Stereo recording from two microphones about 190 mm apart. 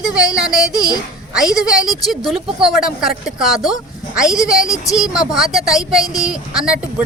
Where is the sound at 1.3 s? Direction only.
5° right (ahead or behind).